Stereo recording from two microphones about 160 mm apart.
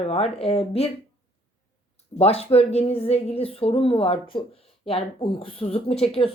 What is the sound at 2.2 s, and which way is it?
Speech, 40° left (ahead or behind).